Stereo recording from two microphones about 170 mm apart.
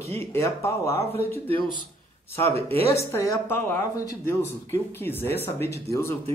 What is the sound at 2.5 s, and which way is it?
Speech, 35° right (ahead or behind).